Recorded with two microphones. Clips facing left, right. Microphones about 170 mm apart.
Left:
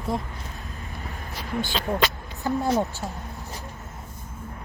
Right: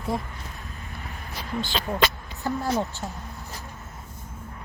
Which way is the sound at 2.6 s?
15° left (ahead or behind).